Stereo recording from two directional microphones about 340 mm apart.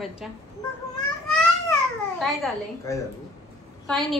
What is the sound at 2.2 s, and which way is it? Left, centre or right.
A woman's voice, centre.